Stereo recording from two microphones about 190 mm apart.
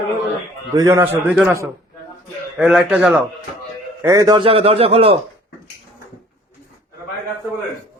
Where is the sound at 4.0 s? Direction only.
15° right (ahead or behind).